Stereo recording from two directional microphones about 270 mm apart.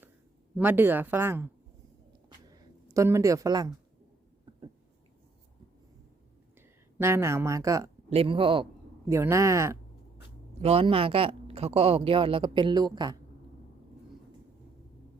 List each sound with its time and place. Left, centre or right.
0.5 s speech: centre
2.5 s a sound: centre
7.0 s speech: centre
10.6 s a woman's voice: right